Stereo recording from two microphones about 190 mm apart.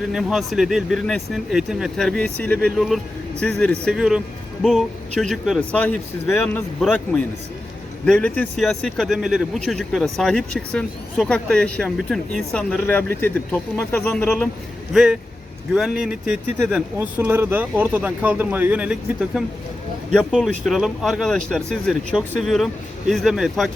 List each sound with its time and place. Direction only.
0.1 s speech: centre (ahead or behind)